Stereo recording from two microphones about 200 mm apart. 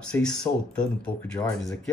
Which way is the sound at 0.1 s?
5° left (ahead or behind).